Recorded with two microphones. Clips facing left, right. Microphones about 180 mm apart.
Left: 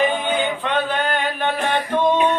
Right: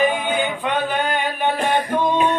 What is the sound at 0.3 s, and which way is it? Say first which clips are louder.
Male singing: even; 10° right (ahead or behind).